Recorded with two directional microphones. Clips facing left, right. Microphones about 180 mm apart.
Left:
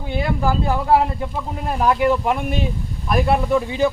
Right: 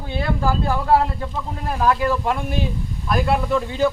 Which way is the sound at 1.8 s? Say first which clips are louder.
Left 2 dB; 20° left (ahead or behind).